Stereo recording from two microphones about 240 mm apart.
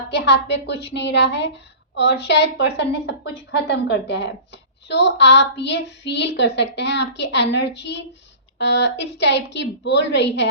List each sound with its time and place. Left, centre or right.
0.1 s a woman's voice: left